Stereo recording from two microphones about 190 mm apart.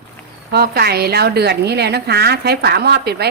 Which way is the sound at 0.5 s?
55° right (ahead or behind).